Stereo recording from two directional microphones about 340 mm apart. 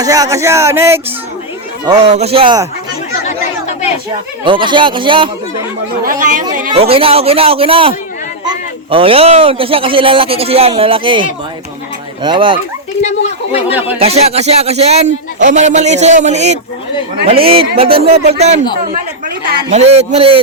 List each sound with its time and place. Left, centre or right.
0.0 s speech: centre
1.9 s speech: centre
3.2 s chatter: centre
4.4 s speech: centre
13.0 s speech: centre
13.7 s speech: centre
14.0 s speech: centre